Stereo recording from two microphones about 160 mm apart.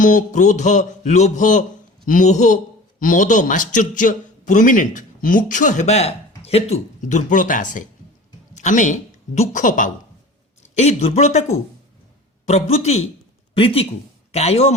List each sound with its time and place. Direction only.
0.0 s a man's voice: 55° left (ahead or behind)
10.8 s a man's voice: 40° left (ahead or behind)
12.5 s speech: 40° left (ahead or behind)